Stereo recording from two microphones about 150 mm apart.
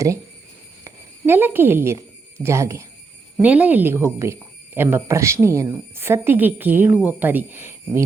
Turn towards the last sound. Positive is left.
turn(degrees=-15)  # may be behind; listen again after turning